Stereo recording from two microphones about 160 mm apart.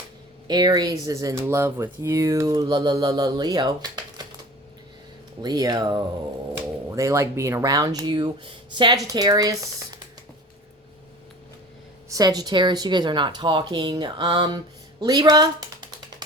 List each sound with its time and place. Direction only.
0.4 s speech: 25° right (ahead or behind)
5.4 s a woman's voice: 25° right (ahead or behind)
12.0 s speech: 20° right (ahead or behind)